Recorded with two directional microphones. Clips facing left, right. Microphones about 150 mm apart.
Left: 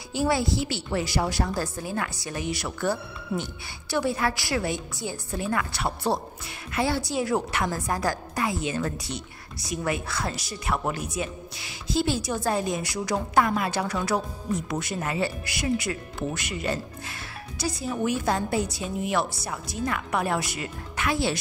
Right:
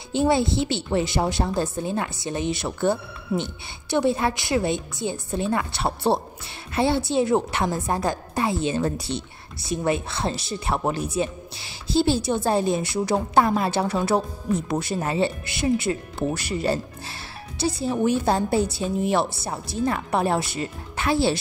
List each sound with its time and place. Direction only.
0.1 s a woman's voice: 25° right (ahead or behind)